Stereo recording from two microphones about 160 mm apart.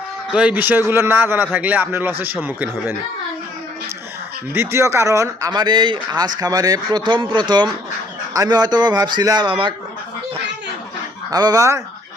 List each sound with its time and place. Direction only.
0.3 s speech: 5° right (ahead or behind)
4.5 s speech: 15° right (ahead or behind); by 9.7 s 30° right (ahead or behind)
11.3 s speech: 25° right (ahead or behind)